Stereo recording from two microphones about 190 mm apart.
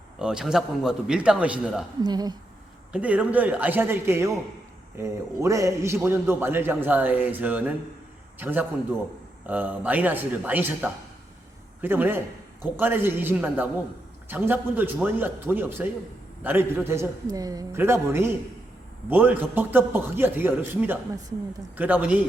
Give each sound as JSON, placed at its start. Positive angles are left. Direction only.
{"t": 0.2, "sound": "a man's voice", "side_deg": -5}
{"t": 2.0, "sound": "a woman's voice", "side_deg": -20}
{"t": 2.9, "sound": "a man's voice", "side_deg": -5}